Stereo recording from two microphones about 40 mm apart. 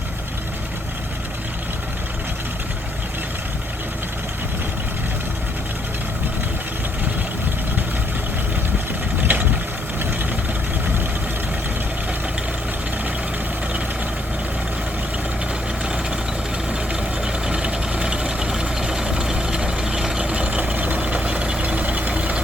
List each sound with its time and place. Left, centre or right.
9.2 s vehicle: right
16.9 s vehicle: right
20.2 s vehicle: right